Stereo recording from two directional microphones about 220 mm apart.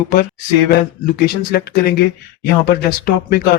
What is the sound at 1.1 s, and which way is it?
Speech, 45° left (ahead or behind).